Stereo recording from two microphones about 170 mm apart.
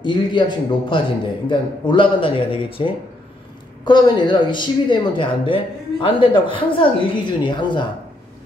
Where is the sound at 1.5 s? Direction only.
30° left (ahead or behind).